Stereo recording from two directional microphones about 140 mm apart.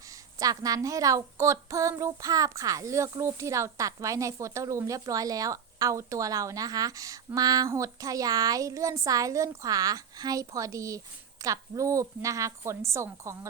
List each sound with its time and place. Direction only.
0.3 s a woman's voice: 25° right (ahead or behind)